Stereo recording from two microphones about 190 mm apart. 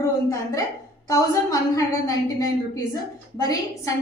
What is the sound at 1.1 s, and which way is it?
A woman's voice, 20° left (ahead or behind).